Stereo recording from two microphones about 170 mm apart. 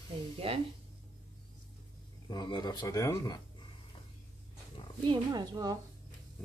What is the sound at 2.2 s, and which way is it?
Speech, 25° left (ahead or behind).